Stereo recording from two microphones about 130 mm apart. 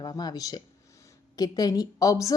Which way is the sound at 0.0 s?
30° left (ahead or behind).